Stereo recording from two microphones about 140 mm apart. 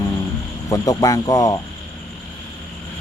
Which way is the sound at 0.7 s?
25° left (ahead or behind).